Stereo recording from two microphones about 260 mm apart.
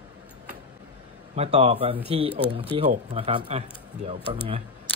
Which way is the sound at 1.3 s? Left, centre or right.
Right.